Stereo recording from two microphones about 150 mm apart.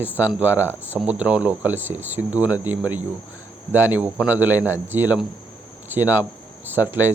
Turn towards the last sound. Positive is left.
turn(degrees=-15)  # may be behind; listen again after turning